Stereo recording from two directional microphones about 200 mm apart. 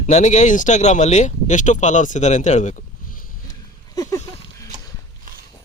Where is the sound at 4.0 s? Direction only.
15° left (ahead or behind).